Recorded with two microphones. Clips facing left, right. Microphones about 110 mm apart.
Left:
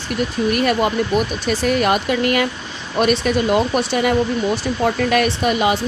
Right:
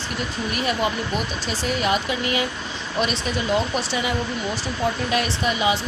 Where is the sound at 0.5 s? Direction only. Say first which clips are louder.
Left 5 dB; 55° left (ahead or behind).